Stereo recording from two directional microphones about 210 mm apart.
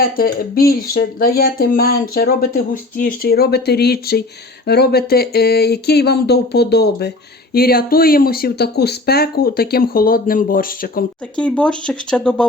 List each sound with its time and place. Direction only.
0.0 s speech: 45° left (ahead or behind)
11.3 s speech: 5° left (ahead or behind)